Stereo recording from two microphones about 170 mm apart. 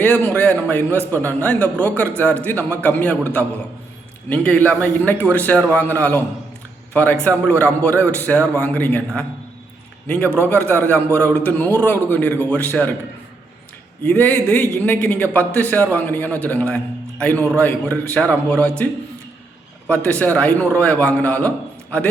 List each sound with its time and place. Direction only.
0.0 s a man's voice: 10° left (ahead or behind)
10.4 s a man's voice: 10° left (ahead or behind)
14.0 s a man's voice: 10° left (ahead or behind)
19.9 s a man's voice: 5° left (ahead or behind)